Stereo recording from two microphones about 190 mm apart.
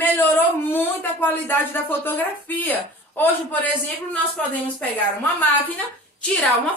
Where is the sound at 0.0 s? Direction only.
10° left (ahead or behind).